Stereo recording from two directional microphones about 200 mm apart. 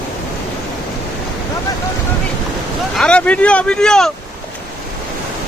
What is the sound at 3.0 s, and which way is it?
Vehicle, 5° left (ahead or behind).